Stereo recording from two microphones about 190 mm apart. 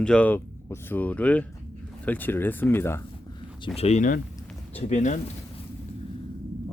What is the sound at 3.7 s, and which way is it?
Speech, 35° left (ahead or behind).